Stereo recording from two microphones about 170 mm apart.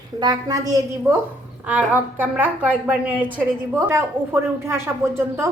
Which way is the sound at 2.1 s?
10° right (ahead or behind).